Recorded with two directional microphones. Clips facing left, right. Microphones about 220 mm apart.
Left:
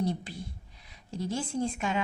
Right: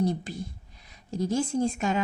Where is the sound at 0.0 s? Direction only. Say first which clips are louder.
Right 4 dB; 45° right (ahead or behind).